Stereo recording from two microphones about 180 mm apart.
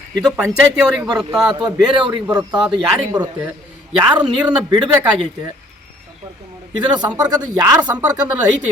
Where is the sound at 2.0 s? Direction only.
20° right (ahead or behind).